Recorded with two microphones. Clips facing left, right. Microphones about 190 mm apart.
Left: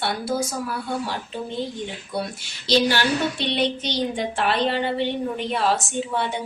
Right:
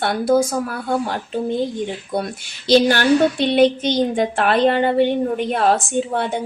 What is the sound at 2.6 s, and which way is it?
A woman's voice, 50° right (ahead or behind).